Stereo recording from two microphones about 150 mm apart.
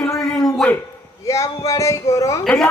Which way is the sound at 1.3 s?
20° left (ahead or behind).